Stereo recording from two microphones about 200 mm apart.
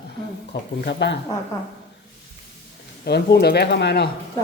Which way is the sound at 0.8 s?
60° left (ahead or behind).